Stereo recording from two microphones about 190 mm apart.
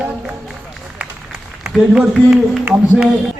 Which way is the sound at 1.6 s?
Centre (ahead or behind).